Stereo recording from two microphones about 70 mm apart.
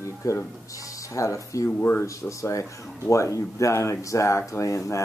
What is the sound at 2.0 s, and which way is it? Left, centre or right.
Speech, left.